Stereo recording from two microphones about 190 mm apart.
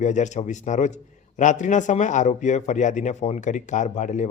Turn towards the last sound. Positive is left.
turn(degrees=40)  # may be behind; listen again after turning